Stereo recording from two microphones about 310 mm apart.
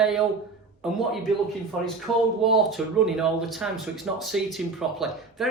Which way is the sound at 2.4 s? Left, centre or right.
Centre.